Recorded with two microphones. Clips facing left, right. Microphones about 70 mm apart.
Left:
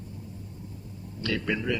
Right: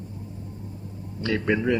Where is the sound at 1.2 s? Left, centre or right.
Right.